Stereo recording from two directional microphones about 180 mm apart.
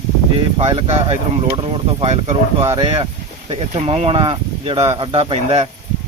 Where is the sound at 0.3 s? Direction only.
30° right (ahead or behind).